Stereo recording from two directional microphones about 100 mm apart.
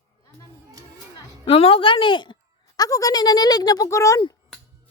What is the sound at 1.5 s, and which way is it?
A woman's voice, 70° left (ahead or behind).